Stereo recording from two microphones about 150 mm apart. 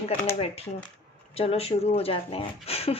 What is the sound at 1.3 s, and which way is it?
A woman's voice, 40° left (ahead or behind).